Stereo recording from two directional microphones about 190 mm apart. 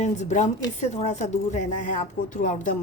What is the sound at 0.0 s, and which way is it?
A woman's voice, 40° left (ahead or behind).